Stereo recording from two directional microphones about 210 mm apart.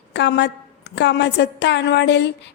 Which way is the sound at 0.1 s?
55° left (ahead or behind).